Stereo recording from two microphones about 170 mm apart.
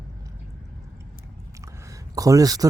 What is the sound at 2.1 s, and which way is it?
Speech, 20° right (ahead or behind).